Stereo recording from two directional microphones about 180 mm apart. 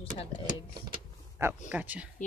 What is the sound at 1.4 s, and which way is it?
Speech, 10° right (ahead or behind).